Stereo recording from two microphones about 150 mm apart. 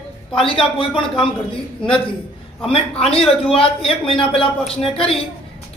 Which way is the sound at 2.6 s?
40° left (ahead or behind).